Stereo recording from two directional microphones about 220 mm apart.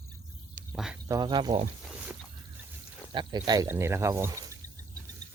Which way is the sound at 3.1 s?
20° right (ahead or behind).